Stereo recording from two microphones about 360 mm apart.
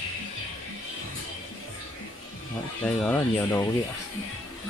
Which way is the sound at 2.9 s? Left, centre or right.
Centre.